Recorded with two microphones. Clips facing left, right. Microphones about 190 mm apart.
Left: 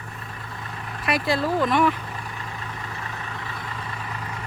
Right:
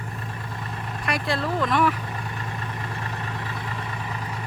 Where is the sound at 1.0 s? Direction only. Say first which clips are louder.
Left 3 dB; 5° left (ahead or behind).